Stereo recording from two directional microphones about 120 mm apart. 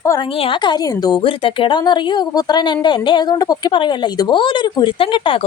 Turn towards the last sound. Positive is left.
turn(degrees=45)  # may be behind; listen again after turning